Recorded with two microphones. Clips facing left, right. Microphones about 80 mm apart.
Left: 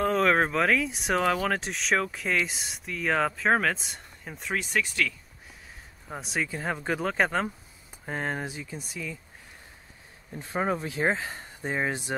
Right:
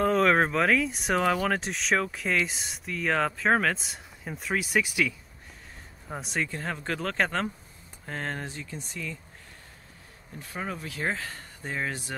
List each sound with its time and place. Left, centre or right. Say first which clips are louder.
0.0 s speech: right 1 dB; centre
6.0 s speech: even; centre
10.4 s speech: left 7 dB; left